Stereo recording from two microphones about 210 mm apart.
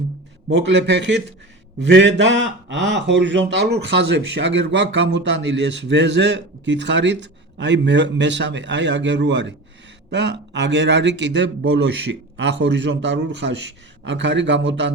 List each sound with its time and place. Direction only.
0.4 s speech: 55° right (ahead or behind)